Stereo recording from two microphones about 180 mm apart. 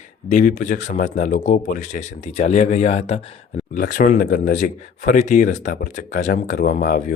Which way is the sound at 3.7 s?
50° left (ahead or behind).